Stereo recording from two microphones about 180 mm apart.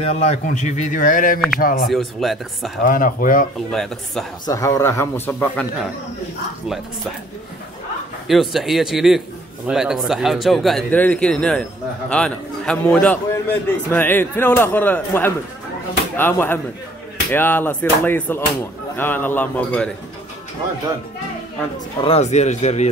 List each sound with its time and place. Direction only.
0.0 s a man's voice: 35° left (ahead or behind); by 1.9 s 50° left (ahead or behind)
1.9 s speech: centre (ahead or behind)
2.8 s a man's voice: 50° left (ahead or behind)
3.7 s speech: centre (ahead or behind)
4.5 s speech: 20° left (ahead or behind)
8.3 s speech: centre (ahead or behind)
22.0 s speech: 35° left (ahead or behind)